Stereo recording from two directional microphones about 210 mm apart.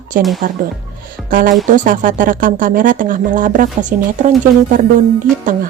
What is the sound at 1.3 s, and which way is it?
A woman's voice, 45° right (ahead or behind).